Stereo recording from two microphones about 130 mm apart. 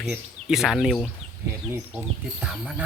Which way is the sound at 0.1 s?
5° right (ahead or behind).